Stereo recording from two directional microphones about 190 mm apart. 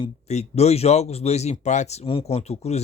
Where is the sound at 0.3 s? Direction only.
35° left (ahead or behind).